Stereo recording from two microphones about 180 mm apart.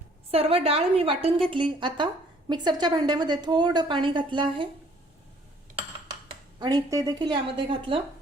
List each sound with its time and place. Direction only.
0.3 s a woman's voice: 30° right (ahead or behind)
6.6 s a woman's voice: 20° right (ahead or behind)